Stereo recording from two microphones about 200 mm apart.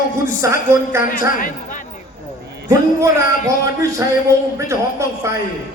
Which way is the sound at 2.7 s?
15° right (ahead or behind).